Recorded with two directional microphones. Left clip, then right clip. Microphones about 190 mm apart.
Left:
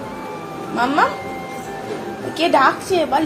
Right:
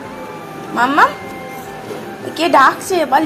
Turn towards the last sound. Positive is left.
turn(degrees=-10)  # may be behind; listen again after turning